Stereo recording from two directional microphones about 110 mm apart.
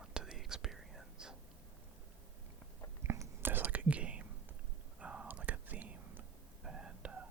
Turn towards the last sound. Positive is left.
turn(degrees=-10)  # may be behind; listen again after turning